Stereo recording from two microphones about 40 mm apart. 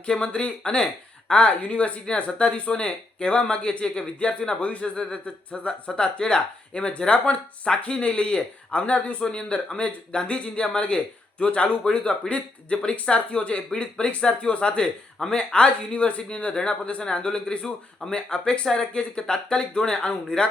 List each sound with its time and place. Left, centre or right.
0.0 s a man's voice: left
5.5 s speech: left
6.0 s a man's voice: left